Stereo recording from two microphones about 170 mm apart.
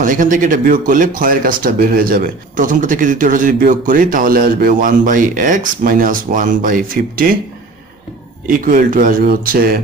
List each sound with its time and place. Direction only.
0.0 s speech: 50° right (ahead or behind)
8.5 s speech: 55° right (ahead or behind)